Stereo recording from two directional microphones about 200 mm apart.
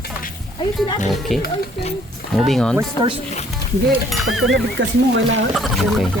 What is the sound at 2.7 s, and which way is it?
Speech, 20° right (ahead or behind).